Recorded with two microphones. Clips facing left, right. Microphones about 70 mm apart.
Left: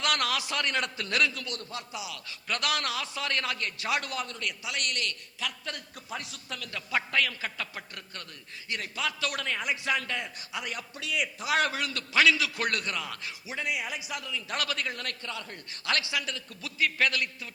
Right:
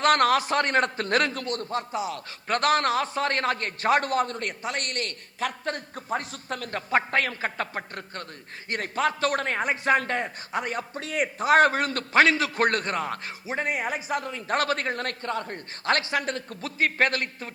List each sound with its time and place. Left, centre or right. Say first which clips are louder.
0.0 s a man's voice: right 9 dB; right